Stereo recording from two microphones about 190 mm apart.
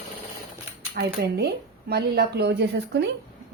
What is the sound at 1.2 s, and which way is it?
A woman's voice, 60° right (ahead or behind).